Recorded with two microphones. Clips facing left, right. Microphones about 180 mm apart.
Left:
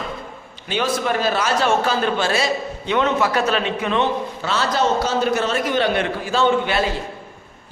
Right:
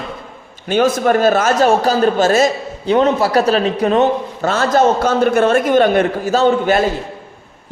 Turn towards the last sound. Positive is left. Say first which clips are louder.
# right 5 dB
turn(degrees=-40)  # may be behind; listen again after turning